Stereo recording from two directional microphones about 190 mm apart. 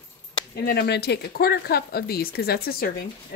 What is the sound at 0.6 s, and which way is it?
Speech, 55° left (ahead or behind).